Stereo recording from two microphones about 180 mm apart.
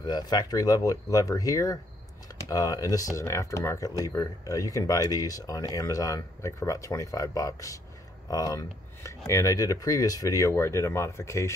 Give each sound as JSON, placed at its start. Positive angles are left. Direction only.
{"t": 0.0, "sound": "speech", "side_deg": 20}